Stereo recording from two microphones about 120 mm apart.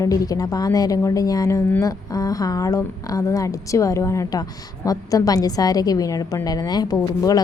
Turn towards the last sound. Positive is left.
turn(degrees=30)  # may be behind; listen again after turning